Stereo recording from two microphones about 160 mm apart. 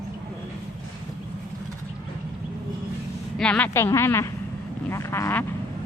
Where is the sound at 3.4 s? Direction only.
5° left (ahead or behind).